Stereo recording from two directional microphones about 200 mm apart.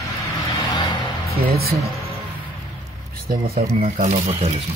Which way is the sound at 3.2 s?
50° right (ahead or behind).